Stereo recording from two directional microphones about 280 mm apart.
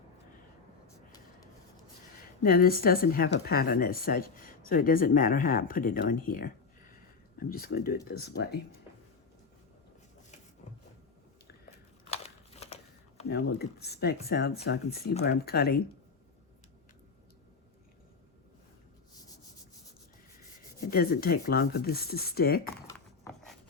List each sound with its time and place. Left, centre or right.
2.4 s speech: left
12.1 s typewriter: left
13.2 s speech: left
20.9 s speech: left
22.9 s a sound: centre